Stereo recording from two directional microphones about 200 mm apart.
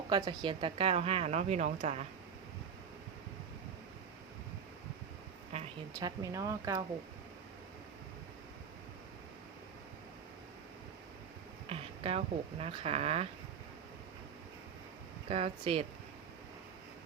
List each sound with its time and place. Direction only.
0.1 s a woman's voice: 20° right (ahead or behind)
5.5 s a sound: 35° right (ahead or behind)
6.0 s speech: 20° right (ahead or behind)
11.7 s a woman's voice: 30° right (ahead or behind)
15.3 s a woman's voice: 30° right (ahead or behind)